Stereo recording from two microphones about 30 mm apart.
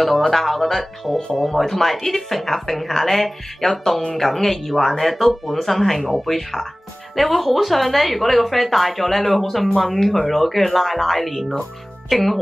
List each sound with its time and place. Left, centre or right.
0.3 s a woman's voice: centre